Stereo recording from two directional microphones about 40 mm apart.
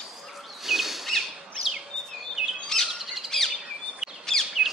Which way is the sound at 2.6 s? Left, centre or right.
Centre.